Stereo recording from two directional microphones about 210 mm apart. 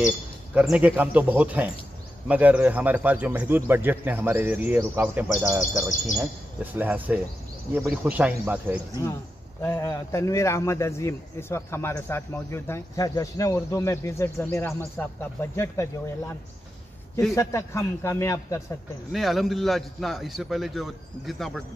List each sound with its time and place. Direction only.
0.6 s speech: 5° right (ahead or behind)
9.6 s a man's voice: 10° left (ahead or behind)
17.4 s a man's voice: 15° left (ahead or behind)
19.1 s a man's voice: centre (ahead or behind)